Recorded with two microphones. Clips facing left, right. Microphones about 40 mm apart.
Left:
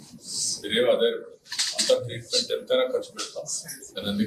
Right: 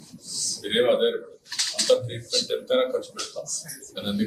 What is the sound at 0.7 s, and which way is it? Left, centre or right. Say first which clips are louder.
Speech: right 1 dB; centre.